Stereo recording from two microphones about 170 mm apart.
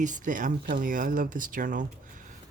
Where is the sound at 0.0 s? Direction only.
50° right (ahead or behind).